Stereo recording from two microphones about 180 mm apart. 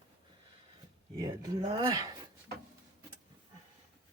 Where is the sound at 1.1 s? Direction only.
20° right (ahead or behind).